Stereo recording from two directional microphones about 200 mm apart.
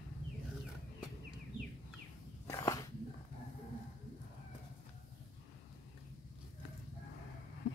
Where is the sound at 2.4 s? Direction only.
15° left (ahead or behind).